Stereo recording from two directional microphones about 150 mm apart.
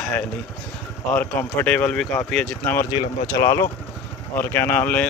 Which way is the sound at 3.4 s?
20° left (ahead or behind).